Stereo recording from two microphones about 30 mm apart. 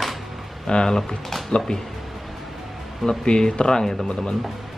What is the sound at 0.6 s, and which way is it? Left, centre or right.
Speech, left.